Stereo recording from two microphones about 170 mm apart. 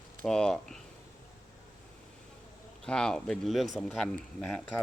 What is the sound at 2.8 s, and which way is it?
Speech, 5° left (ahead or behind).